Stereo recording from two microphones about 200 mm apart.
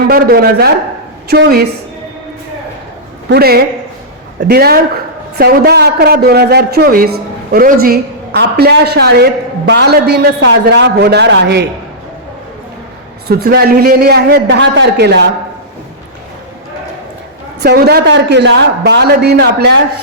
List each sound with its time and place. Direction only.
0.1 s a man's voice: 50° right (ahead or behind)
3.2 s a man's voice: 50° right (ahead or behind)
13.2 s a man's voice: 50° right (ahead or behind)
17.6 s a man's voice: 55° right (ahead or behind)